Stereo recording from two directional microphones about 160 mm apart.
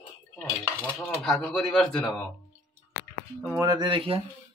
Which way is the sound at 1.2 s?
5° left (ahead or behind).